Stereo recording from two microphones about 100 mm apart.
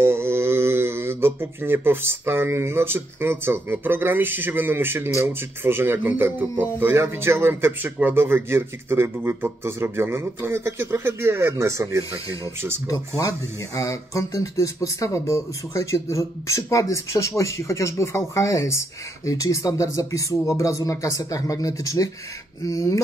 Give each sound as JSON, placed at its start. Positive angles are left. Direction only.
{"t": 0.0, "sound": "speech", "side_deg": -25}
{"t": 12.8, "sound": "speech", "side_deg": 35}